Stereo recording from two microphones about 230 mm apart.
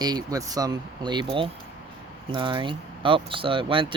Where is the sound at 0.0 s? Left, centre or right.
Centre.